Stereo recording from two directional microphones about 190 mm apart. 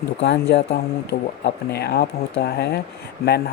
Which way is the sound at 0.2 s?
65° left (ahead or behind).